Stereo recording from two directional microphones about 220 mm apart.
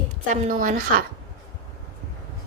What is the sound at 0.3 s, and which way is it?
Speech, 40° right (ahead or behind).